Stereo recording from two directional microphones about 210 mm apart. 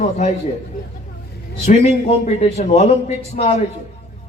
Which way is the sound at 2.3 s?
30° left (ahead or behind).